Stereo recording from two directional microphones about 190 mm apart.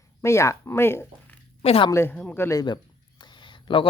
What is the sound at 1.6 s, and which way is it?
Speech, 30° left (ahead or behind).